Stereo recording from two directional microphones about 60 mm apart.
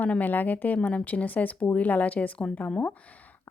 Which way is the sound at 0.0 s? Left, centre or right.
Left.